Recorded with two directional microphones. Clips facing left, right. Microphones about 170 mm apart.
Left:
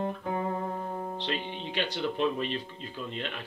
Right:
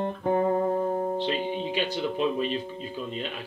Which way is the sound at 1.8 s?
10° right (ahead or behind).